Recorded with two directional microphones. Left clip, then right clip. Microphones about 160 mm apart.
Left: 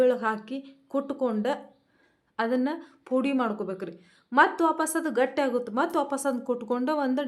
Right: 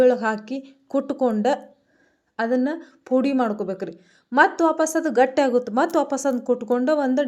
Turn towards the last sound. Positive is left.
turn(degrees=-25)  # may be behind; listen again after turning